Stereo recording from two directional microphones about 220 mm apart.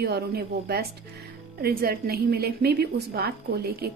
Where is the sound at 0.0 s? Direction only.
45° right (ahead or behind).